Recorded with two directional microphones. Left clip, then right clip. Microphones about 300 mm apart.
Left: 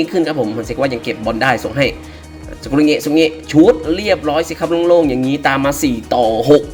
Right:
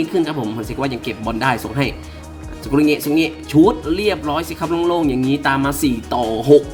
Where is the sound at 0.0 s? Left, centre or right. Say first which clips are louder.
Left 4 dB; centre.